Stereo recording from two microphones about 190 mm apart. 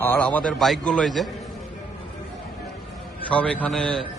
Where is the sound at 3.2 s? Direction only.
5° left (ahead or behind).